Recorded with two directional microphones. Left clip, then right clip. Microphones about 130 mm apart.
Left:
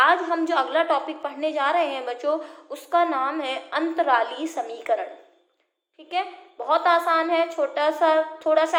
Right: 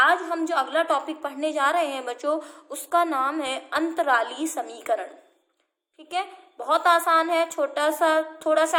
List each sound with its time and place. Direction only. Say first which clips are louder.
0.0 s a woman's voice: left 1 dB; 35° right (ahead or behind); by 5.0 s 55° right (ahead or behind)
6.1 s a woman's voice: left 2 dB; 50° right (ahead or behind)